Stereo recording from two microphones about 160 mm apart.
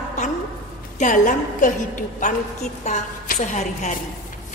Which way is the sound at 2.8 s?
45° left (ahead or behind).